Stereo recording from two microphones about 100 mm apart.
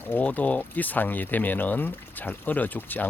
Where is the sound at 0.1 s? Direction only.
15° left (ahead or behind).